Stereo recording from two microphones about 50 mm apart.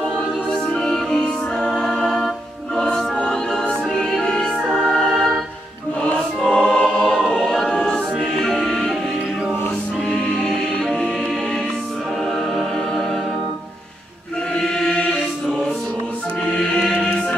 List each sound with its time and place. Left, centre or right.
0.5 s music: centre
1.8 s choir: centre
3.8 s music: centre
6.5 s music: centre
7.2 s music: centre
10.0 s music: centre
12.3 s music: centre
14.5 s chant: centre
16.4 s music: centre